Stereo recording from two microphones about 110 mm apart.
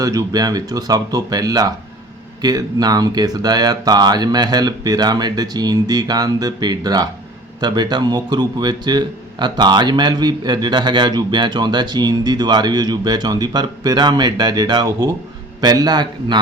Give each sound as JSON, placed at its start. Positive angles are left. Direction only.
{"t": 0.0, "sound": "a man's voice", "side_deg": -30}